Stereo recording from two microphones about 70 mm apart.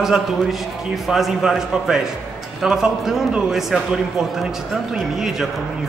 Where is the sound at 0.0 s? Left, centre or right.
Centre.